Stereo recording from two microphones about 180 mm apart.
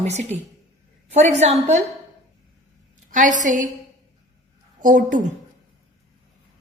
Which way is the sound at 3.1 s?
45° right (ahead or behind).